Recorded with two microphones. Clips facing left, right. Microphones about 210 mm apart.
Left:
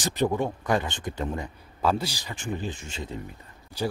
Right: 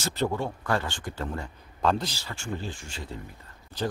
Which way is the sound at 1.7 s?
5° left (ahead or behind).